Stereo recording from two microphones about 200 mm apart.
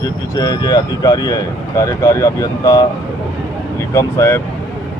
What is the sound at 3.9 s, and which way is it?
Speech, 15° left (ahead or behind).